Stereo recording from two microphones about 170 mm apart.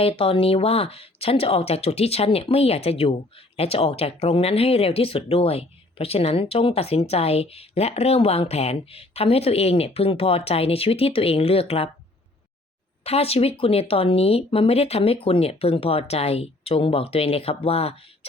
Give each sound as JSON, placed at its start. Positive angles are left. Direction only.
{"t": 0.0, "sound": "speech", "side_deg": 35}
{"t": 13.1, "sound": "speech", "side_deg": 35}